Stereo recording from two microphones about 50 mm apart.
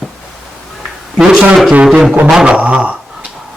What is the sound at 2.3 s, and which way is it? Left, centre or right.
Speech, centre.